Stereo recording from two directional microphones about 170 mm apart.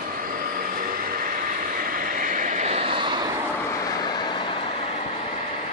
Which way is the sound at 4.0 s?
25° left (ahead or behind).